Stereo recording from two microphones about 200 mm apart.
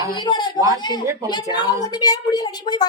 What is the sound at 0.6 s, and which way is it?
Speech, 15° right (ahead or behind).